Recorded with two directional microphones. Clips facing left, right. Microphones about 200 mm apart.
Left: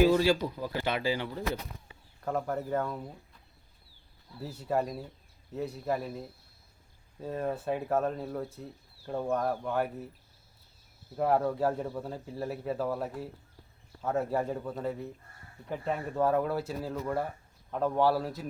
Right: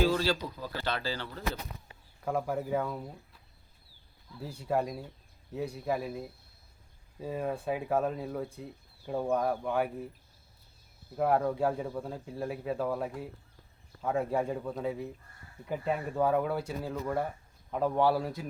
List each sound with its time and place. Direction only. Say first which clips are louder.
0.0 s speech: left 4 dB; 15° left (ahead or behind)
2.2 s speech: even; 5° right (ahead or behind)
4.4 s speech: even; 5° left (ahead or behind)
11.2 s speech: even; centre (ahead or behind)